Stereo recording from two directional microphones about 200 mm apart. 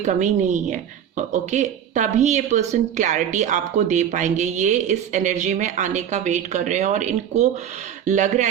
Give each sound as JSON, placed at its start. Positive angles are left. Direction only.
{"t": 0.0, "sound": "speech", "side_deg": -35}